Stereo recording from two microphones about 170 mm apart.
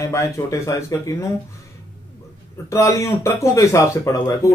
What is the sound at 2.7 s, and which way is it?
A man's voice, 15° left (ahead or behind).